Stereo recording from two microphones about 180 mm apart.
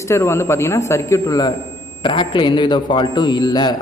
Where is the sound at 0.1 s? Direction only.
15° left (ahead or behind).